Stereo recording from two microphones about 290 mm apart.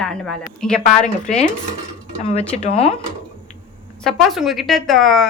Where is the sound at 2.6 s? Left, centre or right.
Left.